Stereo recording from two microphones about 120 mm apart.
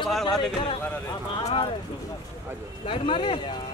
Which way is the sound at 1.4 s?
50° left (ahead or behind).